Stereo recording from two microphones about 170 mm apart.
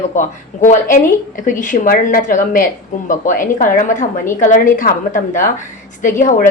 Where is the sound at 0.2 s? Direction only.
50° left (ahead or behind).